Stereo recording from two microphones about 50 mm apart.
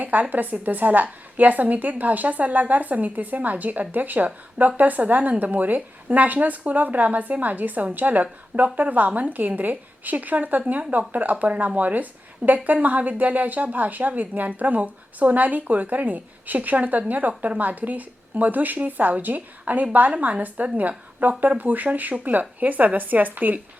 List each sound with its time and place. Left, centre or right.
0.0 s a woman's voice: right